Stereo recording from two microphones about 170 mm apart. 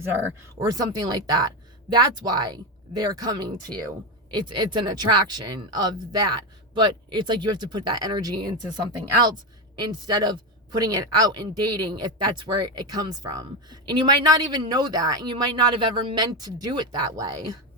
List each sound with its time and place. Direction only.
0.6 s speech: 25° right (ahead or behind)